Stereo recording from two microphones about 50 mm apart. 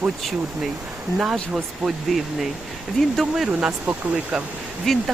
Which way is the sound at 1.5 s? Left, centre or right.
Centre.